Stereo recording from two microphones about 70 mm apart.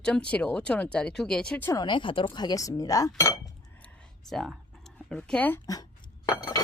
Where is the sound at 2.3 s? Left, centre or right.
Left.